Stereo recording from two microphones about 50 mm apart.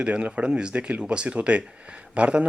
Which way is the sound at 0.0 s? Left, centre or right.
Right.